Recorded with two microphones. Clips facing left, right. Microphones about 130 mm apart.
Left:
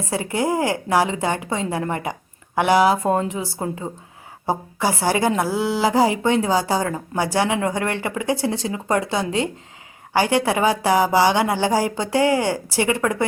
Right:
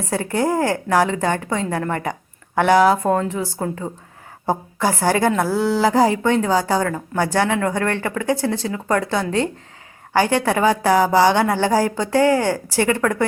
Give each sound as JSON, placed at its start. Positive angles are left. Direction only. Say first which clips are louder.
{"t": 0.3, "sound": "a woman's voice", "louder": "right 2 dB", "side_deg": 10}
{"t": 3.1, "sound": "a woman's voice", "louder": "right 1 dB", "side_deg": 20}